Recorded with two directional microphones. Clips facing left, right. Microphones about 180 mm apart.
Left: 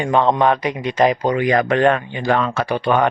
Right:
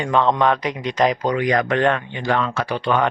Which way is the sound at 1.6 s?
40° left (ahead or behind).